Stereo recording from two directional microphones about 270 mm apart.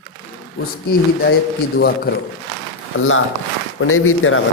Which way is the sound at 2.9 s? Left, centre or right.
Left.